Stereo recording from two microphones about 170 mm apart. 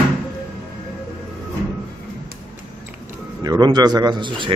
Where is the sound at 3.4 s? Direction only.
25° right (ahead or behind).